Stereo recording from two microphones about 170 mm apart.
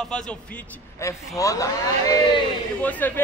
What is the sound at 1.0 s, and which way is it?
A man's voice, 20° left (ahead or behind).